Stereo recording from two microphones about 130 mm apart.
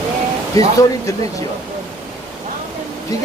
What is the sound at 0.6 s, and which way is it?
Speech, 25° left (ahead or behind).